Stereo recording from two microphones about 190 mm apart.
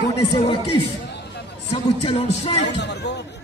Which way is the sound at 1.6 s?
30° left (ahead or behind).